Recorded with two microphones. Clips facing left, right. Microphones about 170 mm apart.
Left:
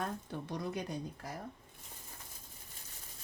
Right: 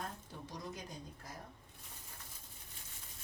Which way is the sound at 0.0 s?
65° left (ahead or behind).